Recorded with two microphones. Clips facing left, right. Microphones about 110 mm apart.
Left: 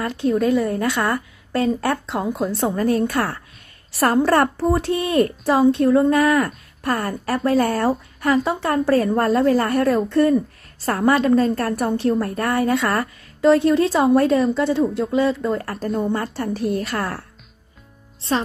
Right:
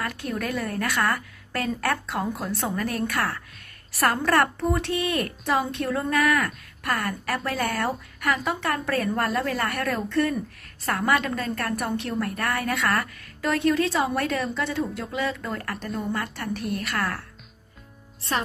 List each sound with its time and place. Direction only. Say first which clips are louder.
0.0 s a woman's voice: left 10 dB; 25° left (ahead or behind)